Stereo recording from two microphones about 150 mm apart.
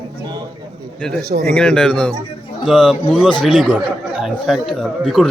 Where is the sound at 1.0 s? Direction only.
Centre (ahead or behind).